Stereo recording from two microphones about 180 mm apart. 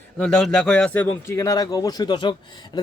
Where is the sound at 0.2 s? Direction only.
5° left (ahead or behind).